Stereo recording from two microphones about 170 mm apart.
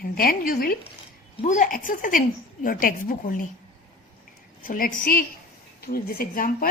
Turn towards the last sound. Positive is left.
turn(degrees=55)  # may be behind; listen again after turning